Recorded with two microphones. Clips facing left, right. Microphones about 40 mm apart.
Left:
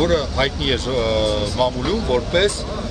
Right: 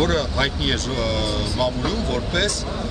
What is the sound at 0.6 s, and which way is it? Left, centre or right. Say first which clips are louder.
Speech: left 3 dB; centre.